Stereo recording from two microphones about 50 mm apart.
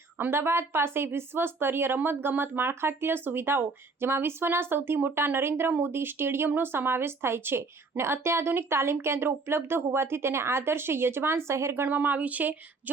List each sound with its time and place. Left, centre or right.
0.2 s a woman's voice: right
11.7 s speech: right